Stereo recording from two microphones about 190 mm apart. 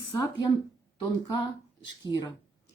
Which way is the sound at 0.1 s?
20° left (ahead or behind).